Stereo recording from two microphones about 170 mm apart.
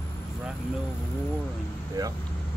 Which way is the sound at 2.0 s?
20° right (ahead or behind).